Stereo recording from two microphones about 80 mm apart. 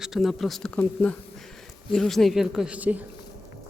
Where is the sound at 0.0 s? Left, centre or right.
Centre.